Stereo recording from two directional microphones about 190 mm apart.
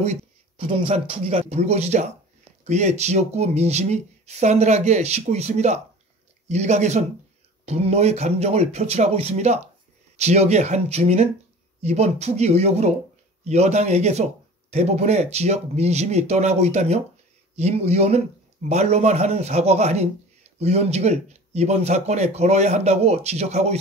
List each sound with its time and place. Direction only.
0.0 s speech: 35° right (ahead or behind)